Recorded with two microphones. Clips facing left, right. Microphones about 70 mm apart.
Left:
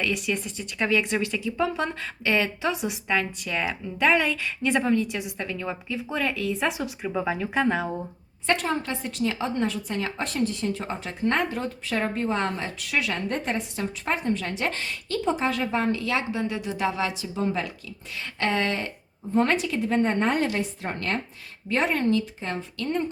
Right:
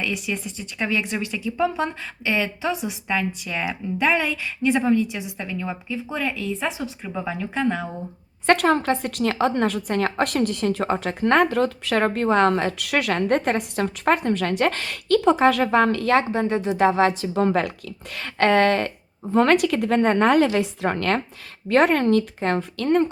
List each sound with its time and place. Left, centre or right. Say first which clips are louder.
0.0 s speech: even; centre
8.4 s a woman's voice: right 7 dB; right
19.3 s a woman's voice: right 6 dB; right
21.7 s a woman's voice: right 6 dB; right